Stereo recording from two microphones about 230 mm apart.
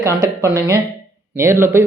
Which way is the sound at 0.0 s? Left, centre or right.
Centre.